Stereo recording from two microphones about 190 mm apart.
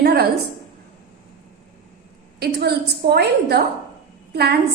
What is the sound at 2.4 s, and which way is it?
A woman's voice, 60° right (ahead or behind).